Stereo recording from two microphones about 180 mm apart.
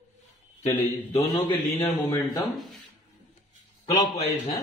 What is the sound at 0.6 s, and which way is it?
Speech, 10° left (ahead or behind).